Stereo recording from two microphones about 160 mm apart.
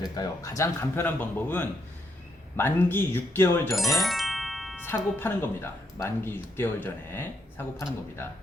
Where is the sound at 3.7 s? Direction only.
Centre (ahead or behind).